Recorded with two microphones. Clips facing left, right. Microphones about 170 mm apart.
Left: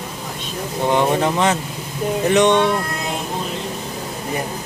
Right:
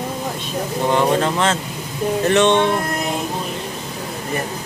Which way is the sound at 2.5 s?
15° right (ahead or behind).